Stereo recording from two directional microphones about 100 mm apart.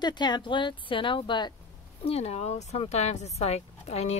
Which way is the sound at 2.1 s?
90° left.